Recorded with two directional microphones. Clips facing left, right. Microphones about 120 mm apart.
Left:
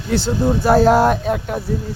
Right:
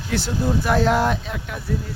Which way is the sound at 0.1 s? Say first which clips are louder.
Left 5 dB; 30° left (ahead or behind).